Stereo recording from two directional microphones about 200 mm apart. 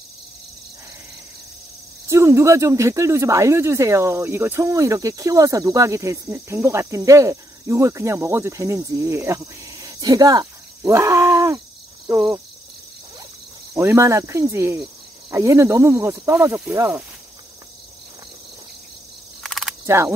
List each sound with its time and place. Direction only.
2.0 s speech: 15° right (ahead or behind)
13.7 s speech: 15° right (ahead or behind)
19.4 s cricket: centre (ahead or behind)
19.9 s speech: 15° right (ahead or behind)